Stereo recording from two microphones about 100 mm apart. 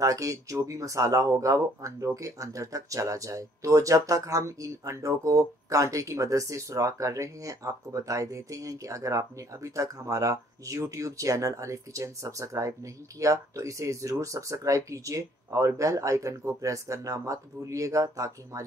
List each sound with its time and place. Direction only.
0.0 s speech: 35° right (ahead or behind)